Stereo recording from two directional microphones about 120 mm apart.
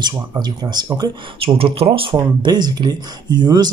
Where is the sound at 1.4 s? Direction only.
50° right (ahead or behind); by 3.7 s 35° right (ahead or behind).